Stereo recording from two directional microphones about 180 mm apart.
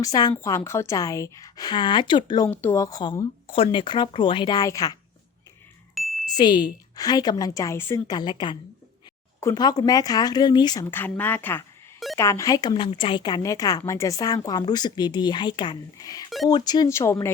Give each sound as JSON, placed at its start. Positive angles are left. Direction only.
{"t": 0.0, "sound": "speech", "side_deg": 20}
{"t": 2.5, "sound": "speech", "side_deg": 10}
{"t": 5.9, "sound": "music", "side_deg": 0}
{"t": 6.3, "sound": "speech", "side_deg": 25}